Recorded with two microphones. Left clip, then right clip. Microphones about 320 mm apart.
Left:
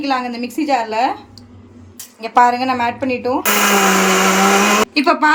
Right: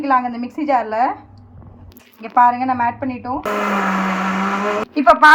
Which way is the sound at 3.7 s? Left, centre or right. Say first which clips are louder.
Left 6 dB; left.